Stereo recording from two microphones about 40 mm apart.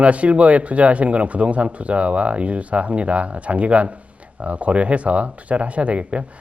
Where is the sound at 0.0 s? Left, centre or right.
Right.